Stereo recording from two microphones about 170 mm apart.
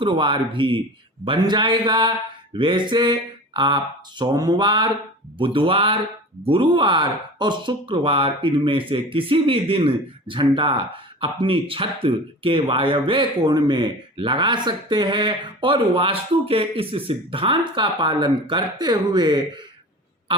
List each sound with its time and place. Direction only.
0.0 s speech: 30° right (ahead or behind)